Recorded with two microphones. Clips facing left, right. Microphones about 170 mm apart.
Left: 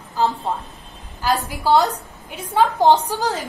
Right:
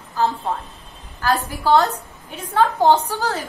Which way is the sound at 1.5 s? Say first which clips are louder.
Even; 15° left (ahead or behind).